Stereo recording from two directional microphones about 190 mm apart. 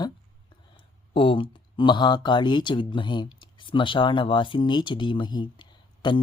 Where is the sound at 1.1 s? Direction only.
25° left (ahead or behind).